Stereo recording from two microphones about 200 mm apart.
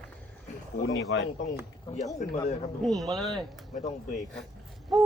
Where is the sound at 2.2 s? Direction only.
35° left (ahead or behind).